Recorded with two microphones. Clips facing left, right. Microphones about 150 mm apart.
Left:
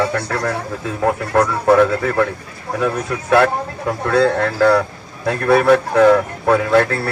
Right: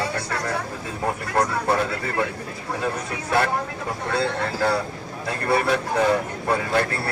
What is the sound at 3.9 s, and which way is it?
Speech, 90° left.